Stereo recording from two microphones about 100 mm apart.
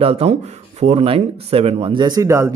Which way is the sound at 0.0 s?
80° right.